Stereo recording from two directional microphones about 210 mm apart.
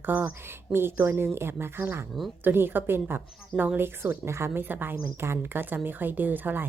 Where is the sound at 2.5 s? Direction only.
10° right (ahead or behind).